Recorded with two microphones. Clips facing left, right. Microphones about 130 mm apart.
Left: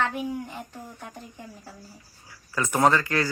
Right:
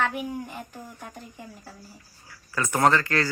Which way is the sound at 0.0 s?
15° right (ahead or behind).